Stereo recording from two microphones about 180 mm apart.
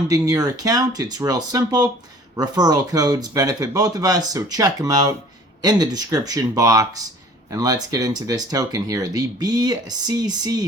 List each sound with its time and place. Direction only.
0.1 s speech: 20° right (ahead or behind)